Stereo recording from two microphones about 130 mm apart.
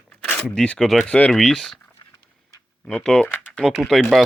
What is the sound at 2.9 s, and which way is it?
Speech, 5° left (ahead or behind).